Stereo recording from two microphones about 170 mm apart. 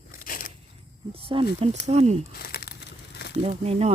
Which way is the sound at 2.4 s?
65° left (ahead or behind).